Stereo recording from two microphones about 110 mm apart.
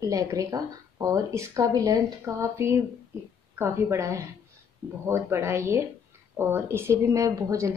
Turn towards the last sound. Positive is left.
turn(degrees=-30)  # may be behind; listen again after turning